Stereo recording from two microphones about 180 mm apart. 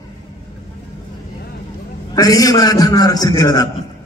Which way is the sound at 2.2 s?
20° left (ahead or behind).